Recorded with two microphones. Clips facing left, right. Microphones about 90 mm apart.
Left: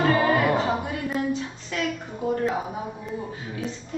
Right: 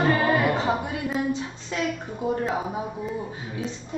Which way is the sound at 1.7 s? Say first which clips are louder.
Right 1 dB; 25° right (ahead or behind).